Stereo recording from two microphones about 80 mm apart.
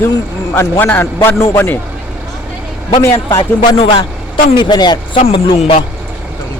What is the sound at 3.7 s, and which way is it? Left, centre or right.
Speech, left.